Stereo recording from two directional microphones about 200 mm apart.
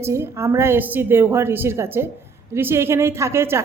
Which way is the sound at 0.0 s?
15° right (ahead or behind).